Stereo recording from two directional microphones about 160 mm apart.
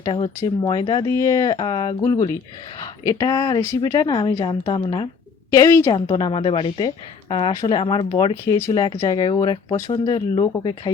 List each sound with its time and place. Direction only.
0.0 s speech: 30° left (ahead or behind)
5.5 s speech: 20° left (ahead or behind)
6.1 s a woman's voice: 30° left (ahead or behind)